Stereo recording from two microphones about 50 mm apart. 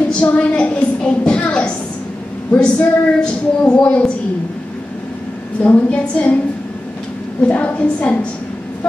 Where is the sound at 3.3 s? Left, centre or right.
Left.